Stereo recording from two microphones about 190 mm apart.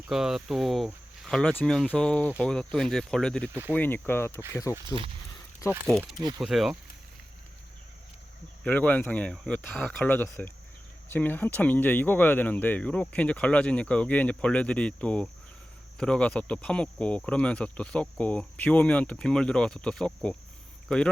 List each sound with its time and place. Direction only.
0.0 s speech: 5° right (ahead or behind)
3.5 s speech: 10° right (ahead or behind)
3.8 s speech: 10° left (ahead or behind)
5.9 s speech: centre (ahead or behind)
8.6 s speech: 10° left (ahead or behind)